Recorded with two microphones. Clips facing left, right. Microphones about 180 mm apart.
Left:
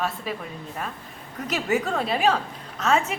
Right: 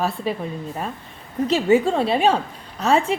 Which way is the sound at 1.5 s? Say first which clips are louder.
Right 7 dB; 30° right (ahead or behind).